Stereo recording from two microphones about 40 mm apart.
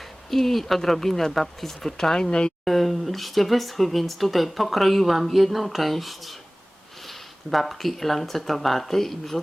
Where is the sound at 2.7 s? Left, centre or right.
Centre.